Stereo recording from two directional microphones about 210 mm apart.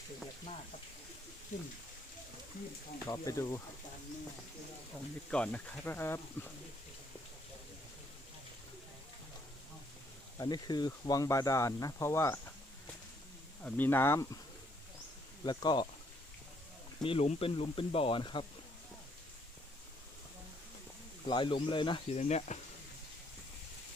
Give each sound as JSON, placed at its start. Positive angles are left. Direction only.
{"t": 2.5, "sound": "speech", "side_deg": 45}
{"t": 3.1, "sound": "speech", "side_deg": 15}
{"t": 5.3, "sound": "speech", "side_deg": 5}
{"t": 10.3, "sound": "speech", "side_deg": 20}
{"t": 13.6, "sound": "speech", "side_deg": 10}
{"t": 15.4, "sound": "speech", "side_deg": 20}
{"t": 17.0, "sound": "speech", "side_deg": 25}
{"t": 21.2, "sound": "speech", "side_deg": 20}